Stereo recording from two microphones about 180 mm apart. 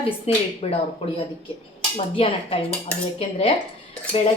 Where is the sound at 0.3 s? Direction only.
35° left (ahead or behind).